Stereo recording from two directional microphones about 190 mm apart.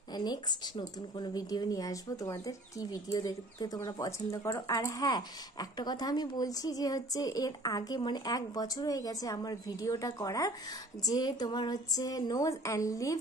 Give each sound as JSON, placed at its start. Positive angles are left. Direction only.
{"t": 0.1, "sound": "speech", "side_deg": 20}